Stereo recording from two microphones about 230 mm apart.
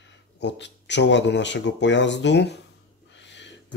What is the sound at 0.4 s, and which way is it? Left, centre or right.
Speech, left.